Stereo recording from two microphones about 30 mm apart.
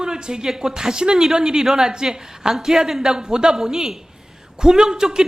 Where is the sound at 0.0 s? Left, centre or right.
Right.